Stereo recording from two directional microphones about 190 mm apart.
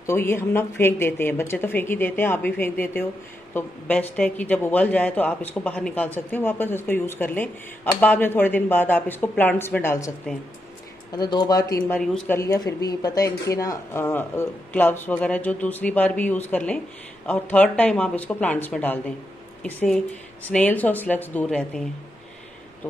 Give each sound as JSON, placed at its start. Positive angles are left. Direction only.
{"t": 0.0, "sound": "speech", "side_deg": 15}
{"t": 11.1, "sound": "speech", "side_deg": 20}
{"t": 12.0, "sound": "a woman's voice", "side_deg": 5}
{"t": 12.4, "sound": "speech", "side_deg": 20}